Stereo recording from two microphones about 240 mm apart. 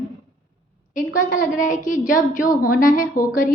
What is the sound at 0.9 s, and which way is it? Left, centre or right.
A woman's voice, left.